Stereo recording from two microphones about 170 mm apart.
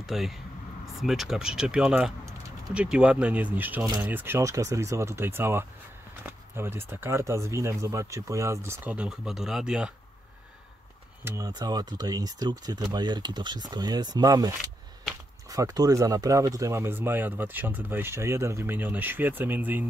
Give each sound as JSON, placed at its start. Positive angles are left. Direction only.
{"t": 0.0, "sound": "speech", "side_deg": 0}
{"t": 11.2, "sound": "speech", "side_deg": -20}